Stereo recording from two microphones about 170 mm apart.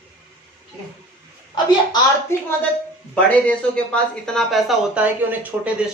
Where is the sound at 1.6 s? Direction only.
25° left (ahead or behind).